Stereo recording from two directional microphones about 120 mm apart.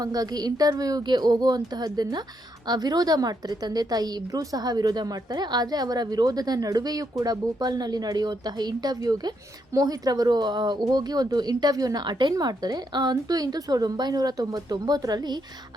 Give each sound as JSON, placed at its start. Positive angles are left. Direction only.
{"t": 0.0, "sound": "a woman's voice", "side_deg": -30}